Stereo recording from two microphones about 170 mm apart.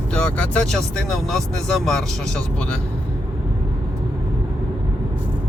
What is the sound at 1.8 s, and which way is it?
Speech, 5° left (ahead or behind).